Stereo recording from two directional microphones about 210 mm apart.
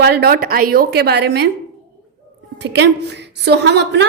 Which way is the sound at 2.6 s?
55° right (ahead or behind).